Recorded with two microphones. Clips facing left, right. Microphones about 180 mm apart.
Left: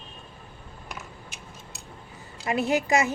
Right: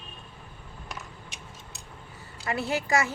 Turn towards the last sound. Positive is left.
turn(degrees=20)  # may be behind; listen again after turning